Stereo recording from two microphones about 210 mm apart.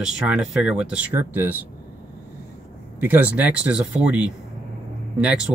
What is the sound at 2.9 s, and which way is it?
Speech, 10° right (ahead or behind).